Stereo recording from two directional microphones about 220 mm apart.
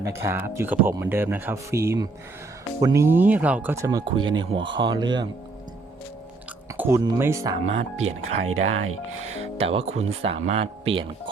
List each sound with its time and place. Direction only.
0.0 s speech: 10° right (ahead or behind)
6.7 s speech: 10° right (ahead or behind)
8.0 s speech: 70° right (ahead or behind)
9.4 s speech: 25° right (ahead or behind)